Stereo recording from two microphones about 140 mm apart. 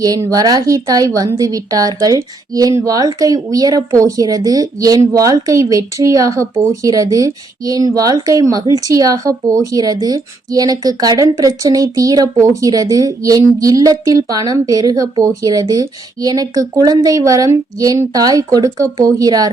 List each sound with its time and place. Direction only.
0.0 s speech: 25° right (ahead or behind)